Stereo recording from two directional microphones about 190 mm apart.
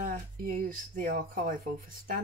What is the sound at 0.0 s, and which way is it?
Speech, 45° right (ahead or behind).